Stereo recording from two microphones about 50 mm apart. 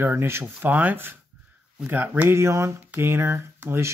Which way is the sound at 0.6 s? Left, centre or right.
Right.